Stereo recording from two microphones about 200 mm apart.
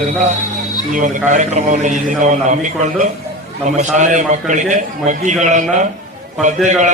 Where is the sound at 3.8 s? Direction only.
40° right (ahead or behind).